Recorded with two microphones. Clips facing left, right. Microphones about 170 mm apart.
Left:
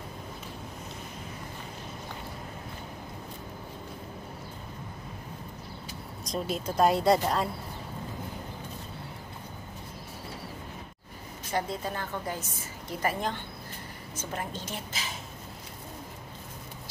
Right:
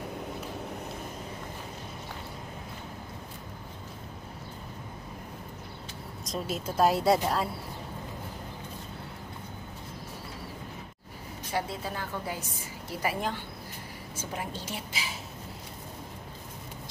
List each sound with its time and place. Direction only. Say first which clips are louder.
6.2 s a woman's voice: left 2 dB; centre (ahead or behind)
11.5 s a woman's voice: left 2 dB; 5° right (ahead or behind)